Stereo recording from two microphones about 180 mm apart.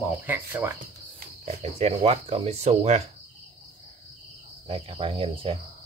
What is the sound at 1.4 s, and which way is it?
Speech, 35° right (ahead or behind).